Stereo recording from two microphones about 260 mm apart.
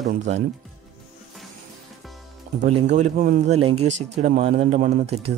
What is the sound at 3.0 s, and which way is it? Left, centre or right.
Speech, right.